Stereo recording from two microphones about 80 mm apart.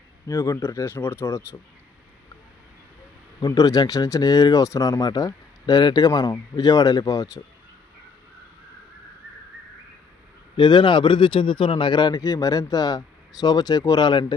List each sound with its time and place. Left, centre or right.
0.3 s speech: left
3.4 s speech: left
6.1 s speech: left
10.6 s speech: left